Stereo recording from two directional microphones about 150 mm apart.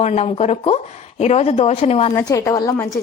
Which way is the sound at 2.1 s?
20° left (ahead or behind).